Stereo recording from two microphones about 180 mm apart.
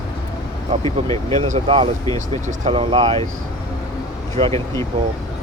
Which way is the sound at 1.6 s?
30° right (ahead or behind).